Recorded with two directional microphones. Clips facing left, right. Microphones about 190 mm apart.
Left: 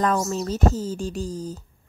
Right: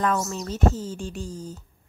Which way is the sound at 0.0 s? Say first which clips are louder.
Left 3 dB; 35° left (ahead or behind).